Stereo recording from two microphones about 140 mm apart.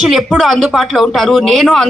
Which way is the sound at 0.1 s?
Centre (ahead or behind).